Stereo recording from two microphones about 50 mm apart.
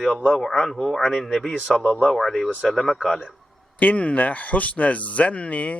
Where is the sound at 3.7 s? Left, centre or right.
Left.